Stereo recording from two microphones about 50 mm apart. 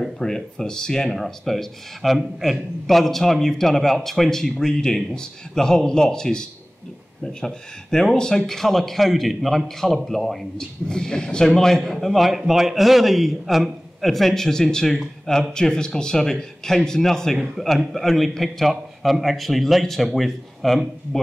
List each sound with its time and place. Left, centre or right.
0.2 s a man's voice: centre
10.6 s a man's voice: centre